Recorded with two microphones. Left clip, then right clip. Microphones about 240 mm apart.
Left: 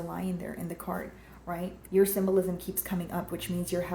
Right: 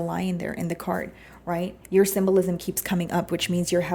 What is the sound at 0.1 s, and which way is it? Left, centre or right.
Speech, right.